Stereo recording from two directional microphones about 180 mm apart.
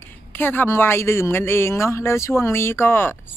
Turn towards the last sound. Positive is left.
turn(degrees=10)  # may be behind; listen again after turning